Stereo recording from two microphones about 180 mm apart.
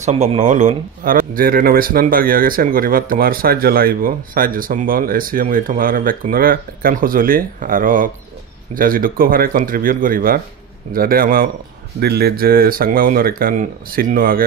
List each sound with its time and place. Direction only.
0.0 s speech: 35° right (ahead or behind); by 14.4 s 55° right (ahead or behind)